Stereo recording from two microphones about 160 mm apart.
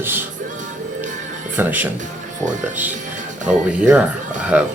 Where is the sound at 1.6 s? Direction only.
10° right (ahead or behind).